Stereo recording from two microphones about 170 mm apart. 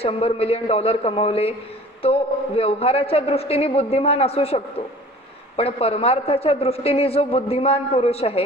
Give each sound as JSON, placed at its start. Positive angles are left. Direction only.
{"t": 0.0, "sound": "a man's voice", "side_deg": 35}